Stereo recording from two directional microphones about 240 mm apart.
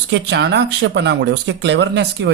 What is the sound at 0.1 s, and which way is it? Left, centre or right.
A man's voice, right.